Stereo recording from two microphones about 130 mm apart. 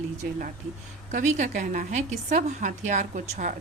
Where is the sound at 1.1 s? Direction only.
65° right (ahead or behind).